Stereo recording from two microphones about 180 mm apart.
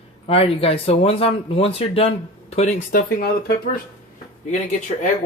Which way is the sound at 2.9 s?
50° left (ahead or behind).